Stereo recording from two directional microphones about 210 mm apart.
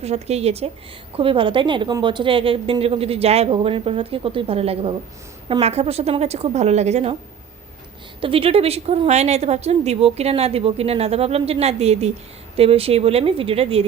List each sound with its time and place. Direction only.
0.0 s a woman's voice: 30° right (ahead or behind)
8.2 s a woman's voice: 25° right (ahead or behind)